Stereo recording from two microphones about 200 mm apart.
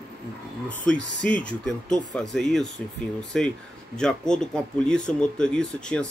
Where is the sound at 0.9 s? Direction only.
5° left (ahead or behind).